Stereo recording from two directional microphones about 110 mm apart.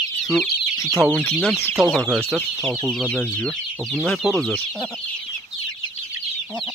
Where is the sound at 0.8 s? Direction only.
Centre (ahead or behind).